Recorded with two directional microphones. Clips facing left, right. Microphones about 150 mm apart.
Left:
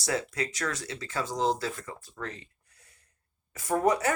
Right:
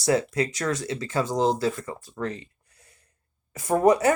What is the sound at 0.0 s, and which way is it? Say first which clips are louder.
Speech: right 8 dB; 20° right (ahead or behind).